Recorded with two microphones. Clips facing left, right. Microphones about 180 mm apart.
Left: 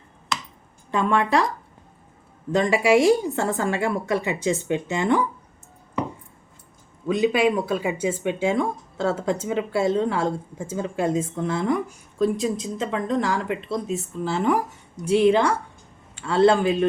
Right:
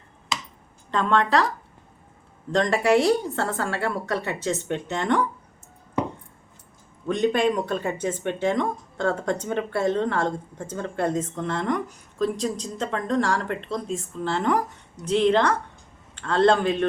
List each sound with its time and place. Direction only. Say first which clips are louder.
0.9 s speech: left 1 dB; 10° left (ahead or behind)
2.5 s speech: left 2 dB; 10° left (ahead or behind)
7.1 s speech: left 2 dB; 5° left (ahead or behind)